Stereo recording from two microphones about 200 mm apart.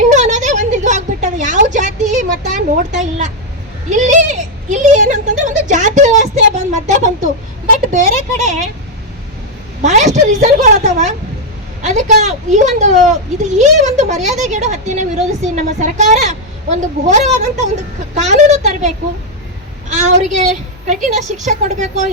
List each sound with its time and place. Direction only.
0.1 s a sound: 35° right (ahead or behind)
3.8 s speech: 40° right (ahead or behind)
9.8 s a woman's voice: 35° right (ahead or behind)